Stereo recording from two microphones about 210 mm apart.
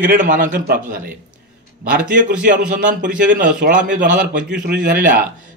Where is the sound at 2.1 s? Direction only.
40° right (ahead or behind).